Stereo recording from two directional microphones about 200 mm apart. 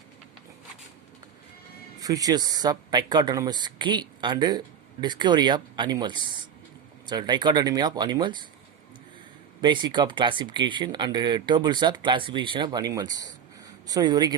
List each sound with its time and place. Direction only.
2.0 s speech: 20° right (ahead or behind)
9.6 s speech: 20° right (ahead or behind)